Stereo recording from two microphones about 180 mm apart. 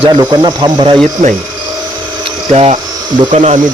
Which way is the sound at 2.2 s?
35° right (ahead or behind).